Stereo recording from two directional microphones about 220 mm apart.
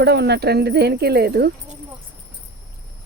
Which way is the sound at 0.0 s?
50° right (ahead or behind).